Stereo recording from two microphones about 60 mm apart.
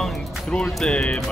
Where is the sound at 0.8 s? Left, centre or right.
Centre.